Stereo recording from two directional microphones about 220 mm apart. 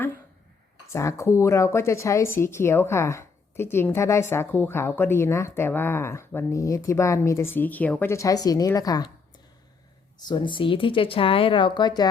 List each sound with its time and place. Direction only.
0.9 s a woman's voice: 15° left (ahead or behind)
10.2 s speech: 20° left (ahead or behind)